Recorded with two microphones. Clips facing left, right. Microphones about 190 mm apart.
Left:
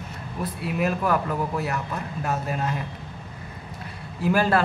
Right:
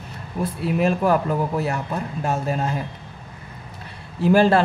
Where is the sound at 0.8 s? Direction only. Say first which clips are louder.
Right 4 dB; 30° right (ahead or behind).